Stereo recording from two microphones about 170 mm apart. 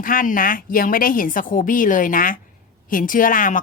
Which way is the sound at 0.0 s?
55° left (ahead or behind).